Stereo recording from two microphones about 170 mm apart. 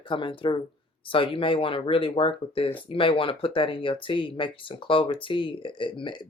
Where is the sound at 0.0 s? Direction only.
30° left (ahead or behind).